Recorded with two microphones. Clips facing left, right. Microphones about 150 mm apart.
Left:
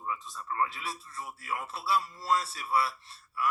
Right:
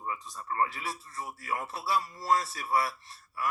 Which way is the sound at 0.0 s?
20° right (ahead or behind).